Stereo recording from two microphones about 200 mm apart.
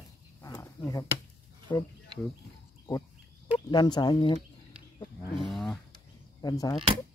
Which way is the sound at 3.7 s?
20° left (ahead or behind).